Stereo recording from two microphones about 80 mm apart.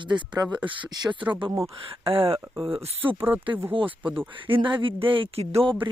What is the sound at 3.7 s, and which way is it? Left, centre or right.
Speech, right.